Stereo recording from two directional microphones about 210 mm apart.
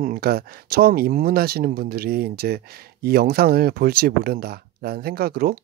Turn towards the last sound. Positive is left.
turn(degrees=-45)  # may be behind; listen again after turning